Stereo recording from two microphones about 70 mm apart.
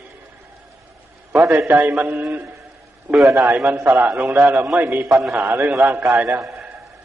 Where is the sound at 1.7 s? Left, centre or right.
Right.